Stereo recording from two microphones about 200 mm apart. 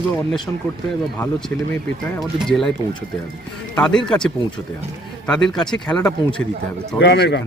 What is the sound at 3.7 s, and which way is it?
A man's voice, 5° left (ahead or behind).